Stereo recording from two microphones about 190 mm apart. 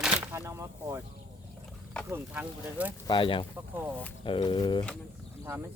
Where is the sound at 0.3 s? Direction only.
15° right (ahead or behind).